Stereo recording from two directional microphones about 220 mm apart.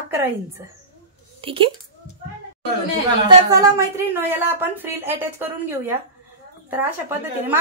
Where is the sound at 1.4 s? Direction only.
25° right (ahead or behind).